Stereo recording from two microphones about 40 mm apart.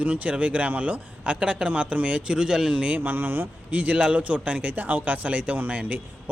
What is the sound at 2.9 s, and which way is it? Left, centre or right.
Speech, right.